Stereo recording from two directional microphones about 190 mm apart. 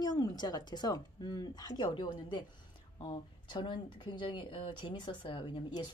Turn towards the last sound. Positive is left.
turn(degrees=25)  # may be behind; listen again after turning